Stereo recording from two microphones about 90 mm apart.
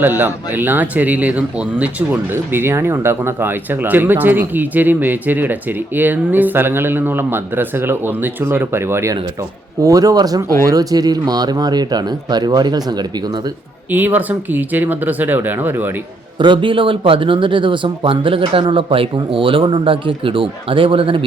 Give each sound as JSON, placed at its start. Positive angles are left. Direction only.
{"t": 0.0, "sound": "speech", "side_deg": -20}
{"t": 9.8, "sound": "speech", "side_deg": -40}
{"t": 13.9, "sound": "speech", "side_deg": -20}
{"t": 16.4, "sound": "speech", "side_deg": -65}